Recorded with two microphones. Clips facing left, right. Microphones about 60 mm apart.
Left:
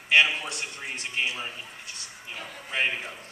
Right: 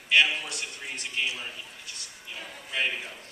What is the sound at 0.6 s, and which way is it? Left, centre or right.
A man's voice, left.